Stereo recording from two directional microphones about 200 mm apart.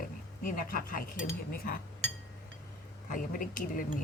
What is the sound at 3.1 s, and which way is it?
Speech, 45° left (ahead or behind).